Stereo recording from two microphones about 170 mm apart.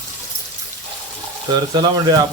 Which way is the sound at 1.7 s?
25° right (ahead or behind).